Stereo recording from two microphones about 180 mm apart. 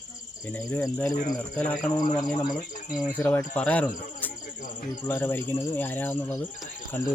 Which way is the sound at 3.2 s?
15° left (ahead or behind).